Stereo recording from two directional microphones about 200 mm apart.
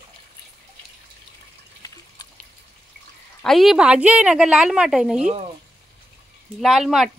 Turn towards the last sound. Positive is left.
turn(degrees=0)  # may be behind; listen again after turning